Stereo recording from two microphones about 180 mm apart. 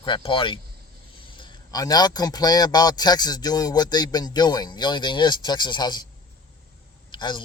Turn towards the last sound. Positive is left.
turn(degrees=25)  # may be behind; listen again after turning